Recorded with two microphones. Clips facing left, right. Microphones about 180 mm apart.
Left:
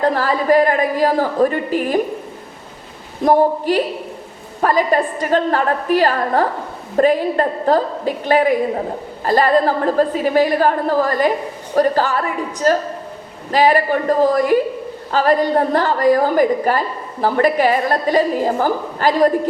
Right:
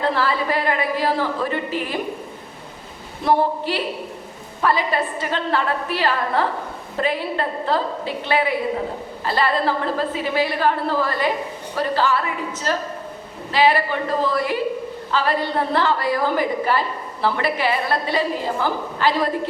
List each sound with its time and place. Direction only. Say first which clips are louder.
0.0 s a woman's voice: left 4 dB; 45° left (ahead or behind)
3.2 s a woman's voice: left 5 dB; 45° left (ahead or behind)